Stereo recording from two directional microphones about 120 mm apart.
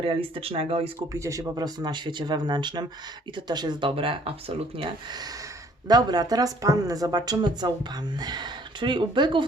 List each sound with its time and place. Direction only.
0.0 s speech: 50° right (ahead or behind)
0.9 s speech: 25° right (ahead or behind); by 4.9 s 50° right (ahead or behind)
5.9 s speech: 35° right (ahead or behind)